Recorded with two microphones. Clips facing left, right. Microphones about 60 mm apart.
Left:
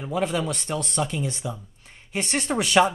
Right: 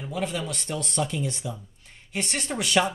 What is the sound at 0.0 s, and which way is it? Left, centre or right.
Speech, left.